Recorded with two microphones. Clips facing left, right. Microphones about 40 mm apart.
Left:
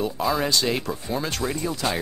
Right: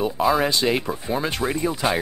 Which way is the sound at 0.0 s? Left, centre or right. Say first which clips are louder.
Right 4 dB; centre.